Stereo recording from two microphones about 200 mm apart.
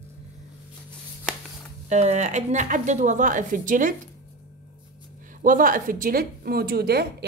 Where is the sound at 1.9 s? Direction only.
35° right (ahead or behind).